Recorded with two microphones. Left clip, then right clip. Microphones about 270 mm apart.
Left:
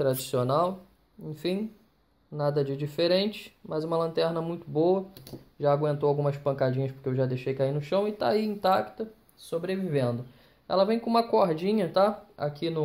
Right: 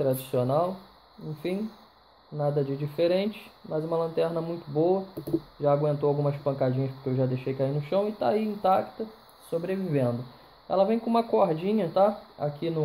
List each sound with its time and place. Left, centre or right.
0.0 s speech: left